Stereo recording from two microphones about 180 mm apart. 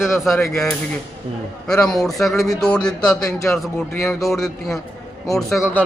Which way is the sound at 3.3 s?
15° left (ahead or behind).